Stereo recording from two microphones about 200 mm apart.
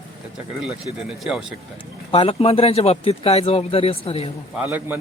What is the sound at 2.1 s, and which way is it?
Speech, 25° left (ahead or behind).